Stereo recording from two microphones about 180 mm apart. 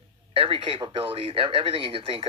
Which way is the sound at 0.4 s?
30° right (ahead or behind).